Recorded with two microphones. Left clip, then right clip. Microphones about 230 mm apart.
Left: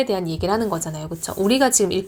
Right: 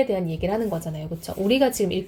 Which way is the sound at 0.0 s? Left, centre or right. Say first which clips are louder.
Left 2 dB; left.